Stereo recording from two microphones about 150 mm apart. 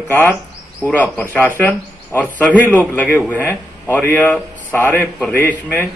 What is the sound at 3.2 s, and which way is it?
Speech, 10° right (ahead or behind).